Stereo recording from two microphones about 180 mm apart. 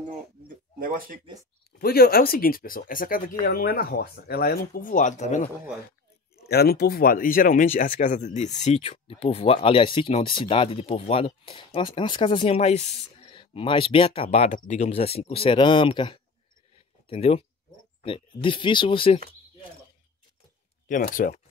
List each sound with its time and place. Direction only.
0.7 s a sound: 50° right (ahead or behind)
1.8 s speech: 55° left (ahead or behind); by 5.5 s 40° left (ahead or behind)
6.3 s speech: 60° left (ahead or behind); by 19.2 s 30° left (ahead or behind)
20.9 s speech: 50° left (ahead or behind)